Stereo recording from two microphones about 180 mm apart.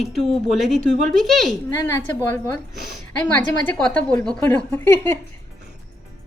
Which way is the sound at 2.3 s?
15° left (ahead or behind).